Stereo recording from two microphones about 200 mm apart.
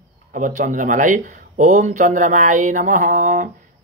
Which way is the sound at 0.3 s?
40° right (ahead or behind).